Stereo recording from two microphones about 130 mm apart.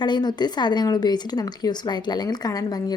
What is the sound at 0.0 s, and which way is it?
A woman's voice, 35° left (ahead or behind).